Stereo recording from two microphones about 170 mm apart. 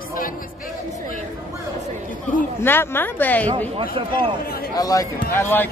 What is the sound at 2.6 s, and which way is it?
Speech, 10° left (ahead or behind).